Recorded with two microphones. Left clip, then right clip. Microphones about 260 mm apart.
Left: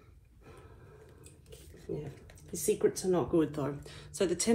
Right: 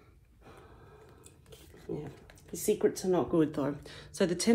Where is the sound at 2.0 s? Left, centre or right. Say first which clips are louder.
Even; right.